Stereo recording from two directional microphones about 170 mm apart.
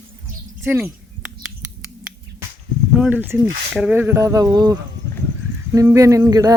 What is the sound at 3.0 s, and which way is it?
Speech, 10° right (ahead or behind).